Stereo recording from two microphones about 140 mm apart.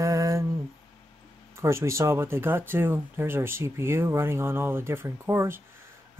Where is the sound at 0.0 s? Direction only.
25° right (ahead or behind).